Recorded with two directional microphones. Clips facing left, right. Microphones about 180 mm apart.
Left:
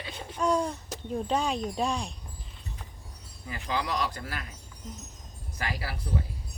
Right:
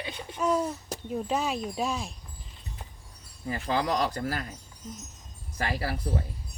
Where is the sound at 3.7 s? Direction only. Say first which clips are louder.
Right 3 dB; 40° right (ahead or behind).